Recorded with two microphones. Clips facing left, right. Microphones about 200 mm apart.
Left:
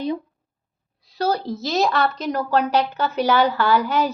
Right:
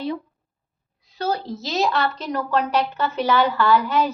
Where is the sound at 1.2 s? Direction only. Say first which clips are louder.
Left 3 dB; 40° left (ahead or behind).